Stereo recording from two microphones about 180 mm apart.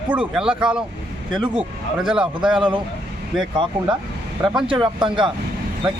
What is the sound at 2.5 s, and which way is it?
Speech, 25° right (ahead or behind).